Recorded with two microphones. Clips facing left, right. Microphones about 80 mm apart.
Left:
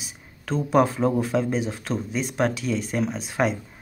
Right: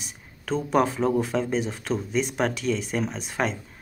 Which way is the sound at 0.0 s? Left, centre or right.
Centre.